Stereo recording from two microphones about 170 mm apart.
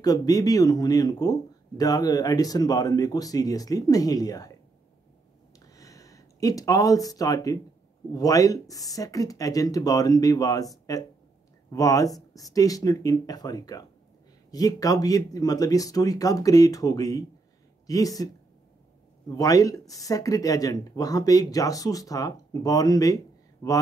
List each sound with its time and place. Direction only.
0.0 s speech: 20° left (ahead or behind)
5.7 s a sound: 20° left (ahead or behind)
8.1 s speech: 20° left (ahead or behind)